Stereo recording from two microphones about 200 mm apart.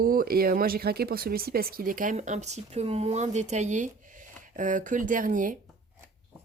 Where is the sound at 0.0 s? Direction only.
45° right (ahead or behind).